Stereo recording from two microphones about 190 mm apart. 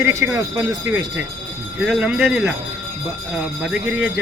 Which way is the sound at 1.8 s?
5° right (ahead or behind).